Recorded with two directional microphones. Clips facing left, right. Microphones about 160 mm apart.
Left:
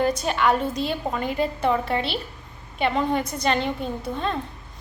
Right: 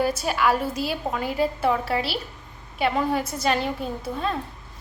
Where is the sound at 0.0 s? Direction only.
5° right (ahead or behind).